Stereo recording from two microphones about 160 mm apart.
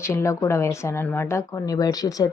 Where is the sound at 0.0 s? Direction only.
15° left (ahead or behind).